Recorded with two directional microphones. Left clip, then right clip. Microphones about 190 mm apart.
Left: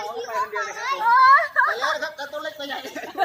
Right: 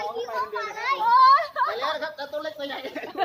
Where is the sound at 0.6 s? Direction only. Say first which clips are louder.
Even; 55° left (ahead or behind).